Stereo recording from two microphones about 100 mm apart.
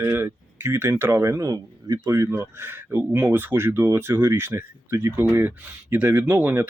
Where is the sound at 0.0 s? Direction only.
25° right (ahead or behind).